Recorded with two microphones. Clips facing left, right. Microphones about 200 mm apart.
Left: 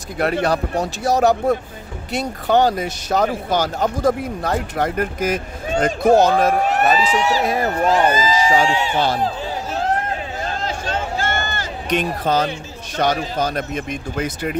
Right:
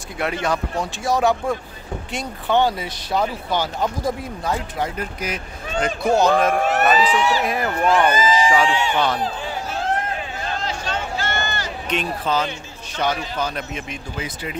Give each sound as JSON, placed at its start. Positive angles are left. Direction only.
{"t": 0.2, "sound": "speech", "side_deg": 40}
{"t": 4.1, "sound": "speech", "side_deg": 55}
{"t": 6.4, "sound": "speech", "side_deg": 35}
{"t": 10.4, "sound": "speech", "side_deg": 45}